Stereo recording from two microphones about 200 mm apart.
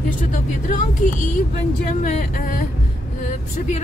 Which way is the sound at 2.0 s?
40° left (ahead or behind).